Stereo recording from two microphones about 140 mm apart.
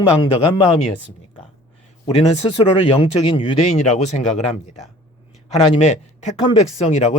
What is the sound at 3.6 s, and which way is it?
Speech, 55° left (ahead or behind).